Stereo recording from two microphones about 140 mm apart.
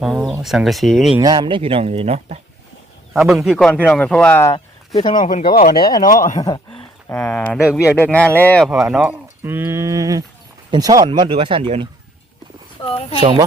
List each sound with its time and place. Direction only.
0.0 s a man's voice: 5° right (ahead or behind)
1.2 s speech: 30° right (ahead or behind); by 2.4 s 45° right (ahead or behind)
3.1 s a man's voice: 5° right (ahead or behind); by 4.5 s 15° left (ahead or behind)
5.2 s speech: 65° left (ahead or behind)
5.5 s speech: 90° left
6.0 s speech: 75° left (ahead or behind)
7.1 s speech: 10° left (ahead or behind)
8.7 s speech: 5° right (ahead or behind); by 11.9 s 35° right (ahead or behind)
12.8 s speech: 45° left (ahead or behind)